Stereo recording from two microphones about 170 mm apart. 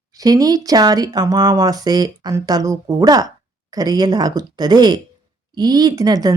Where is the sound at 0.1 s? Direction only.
20° right (ahead or behind).